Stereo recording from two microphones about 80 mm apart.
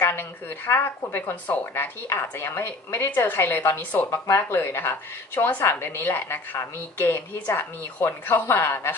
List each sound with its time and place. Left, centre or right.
0.0 s a woman's voice: left